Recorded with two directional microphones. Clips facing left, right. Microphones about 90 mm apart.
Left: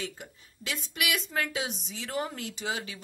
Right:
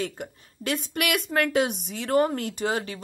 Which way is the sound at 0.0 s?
50° right (ahead or behind).